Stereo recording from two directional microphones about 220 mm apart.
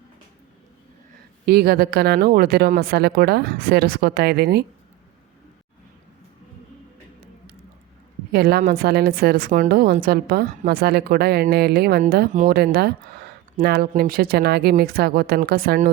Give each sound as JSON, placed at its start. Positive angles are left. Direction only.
{"t": 1.5, "sound": "a woman's voice", "side_deg": -45}
{"t": 8.3, "sound": "a woman's voice", "side_deg": -45}